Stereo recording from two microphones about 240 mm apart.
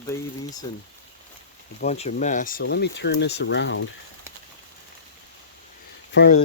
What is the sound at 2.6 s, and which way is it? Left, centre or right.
Speech, left.